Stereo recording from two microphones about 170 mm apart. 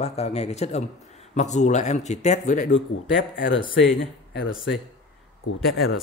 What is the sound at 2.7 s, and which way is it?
Speech, 90° left.